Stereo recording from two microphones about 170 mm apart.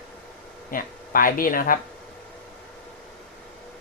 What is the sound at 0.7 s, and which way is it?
Speech, 55° left (ahead or behind).